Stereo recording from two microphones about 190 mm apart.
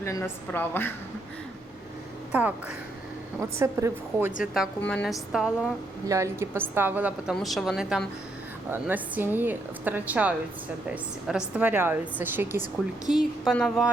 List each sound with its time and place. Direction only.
0.0 s a woman's voice: 15° left (ahead or behind)
2.3 s a woman's voice: 5° right (ahead or behind)
4.8 s a woman's voice: 5° left (ahead or behind)
6.1 s a woman's voice: 15° right (ahead or behind)